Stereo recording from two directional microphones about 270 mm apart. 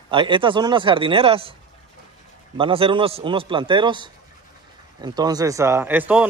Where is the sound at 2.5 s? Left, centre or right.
Centre.